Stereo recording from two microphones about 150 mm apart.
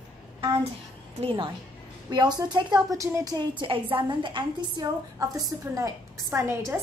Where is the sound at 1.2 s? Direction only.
35° right (ahead or behind).